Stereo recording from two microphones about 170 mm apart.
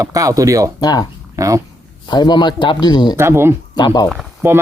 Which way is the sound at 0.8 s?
25° left (ahead or behind).